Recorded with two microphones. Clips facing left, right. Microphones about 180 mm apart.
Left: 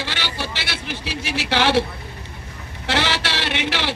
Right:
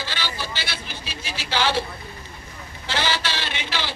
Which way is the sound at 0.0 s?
70° left (ahead or behind).